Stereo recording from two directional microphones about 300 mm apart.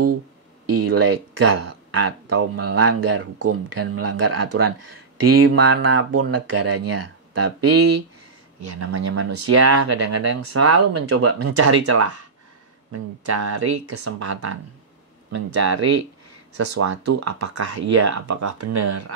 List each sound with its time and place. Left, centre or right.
0.7 s speech: right
12.9 s speech: right
13.8 s speech: right
15.3 s speech: right